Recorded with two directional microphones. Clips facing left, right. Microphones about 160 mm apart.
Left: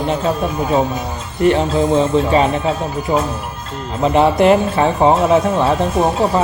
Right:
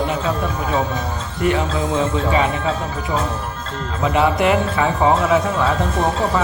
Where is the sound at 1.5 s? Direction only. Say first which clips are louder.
Left 6 dB; 30° left (ahead or behind).